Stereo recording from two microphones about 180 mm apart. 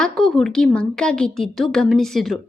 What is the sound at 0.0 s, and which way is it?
A woman's voice, 5° left (ahead or behind).